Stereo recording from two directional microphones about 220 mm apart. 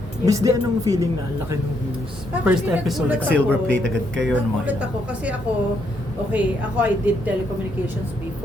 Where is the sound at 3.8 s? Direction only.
55° right (ahead or behind).